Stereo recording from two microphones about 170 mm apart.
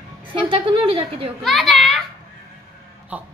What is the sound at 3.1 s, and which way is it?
Speech, 10° right (ahead or behind).